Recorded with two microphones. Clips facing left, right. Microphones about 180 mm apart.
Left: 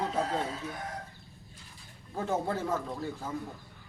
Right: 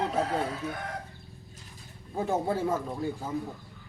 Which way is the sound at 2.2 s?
10° right (ahead or behind).